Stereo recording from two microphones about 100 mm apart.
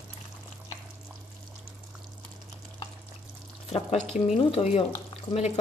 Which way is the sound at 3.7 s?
90° left.